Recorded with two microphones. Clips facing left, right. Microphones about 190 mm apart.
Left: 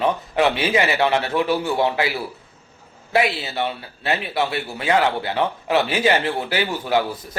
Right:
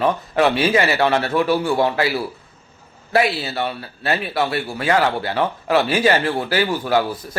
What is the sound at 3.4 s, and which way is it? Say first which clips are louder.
Speech: right 1 dB; 20° left (ahead or behind).